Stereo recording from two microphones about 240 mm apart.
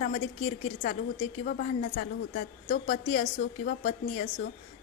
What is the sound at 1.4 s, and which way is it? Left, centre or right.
A woman's voice, left.